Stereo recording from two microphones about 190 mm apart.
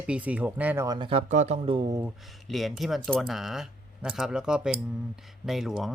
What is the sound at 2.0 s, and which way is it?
Speech, centre (ahead or behind).